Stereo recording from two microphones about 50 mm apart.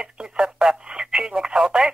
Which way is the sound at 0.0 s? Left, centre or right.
Centre.